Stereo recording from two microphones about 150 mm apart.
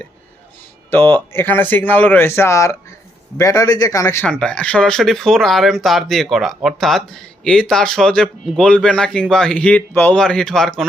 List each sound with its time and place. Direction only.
0.9 s speech: 15° left (ahead or behind)
4.3 s speech: 5° left (ahead or behind)